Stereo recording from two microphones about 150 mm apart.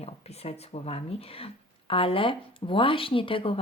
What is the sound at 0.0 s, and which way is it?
A woman's voice, 45° left (ahead or behind).